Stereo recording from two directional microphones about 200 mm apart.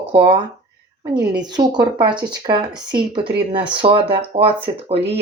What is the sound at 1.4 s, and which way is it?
A woman's voice, 20° right (ahead or behind).